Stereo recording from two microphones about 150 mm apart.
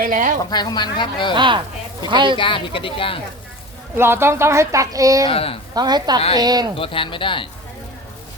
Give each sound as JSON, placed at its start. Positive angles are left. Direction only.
{"t": 0.0, "sound": "speech", "side_deg": -65}
{"t": 0.5, "sound": "speech", "side_deg": 30}
{"t": 1.4, "sound": "speech", "side_deg": -30}
{"t": 2.4, "sound": "speech", "side_deg": 35}
{"t": 3.9, "sound": "a woman's voice", "side_deg": -15}
{"t": 5.3, "sound": "speech", "side_deg": 40}
{"t": 5.7, "sound": "a woman's voice", "side_deg": -25}
{"t": 6.7, "sound": "speech", "side_deg": 35}